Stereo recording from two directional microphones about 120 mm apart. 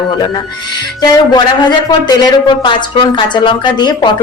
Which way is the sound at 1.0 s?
35° left (ahead or behind).